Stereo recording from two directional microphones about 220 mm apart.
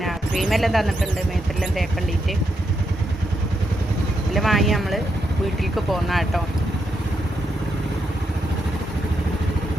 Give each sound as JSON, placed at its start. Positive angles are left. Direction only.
{"t": 0.0, "sound": "speech", "side_deg": 0}
{"t": 4.4, "sound": "speech", "side_deg": 0}